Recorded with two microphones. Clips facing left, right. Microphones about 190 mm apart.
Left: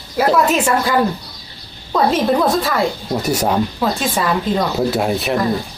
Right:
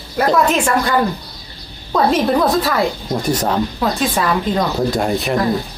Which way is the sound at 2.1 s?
Centre (ahead or behind).